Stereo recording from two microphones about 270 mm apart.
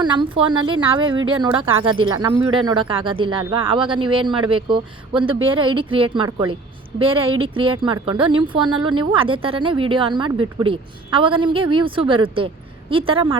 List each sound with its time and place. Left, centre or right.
0.0 s speech: centre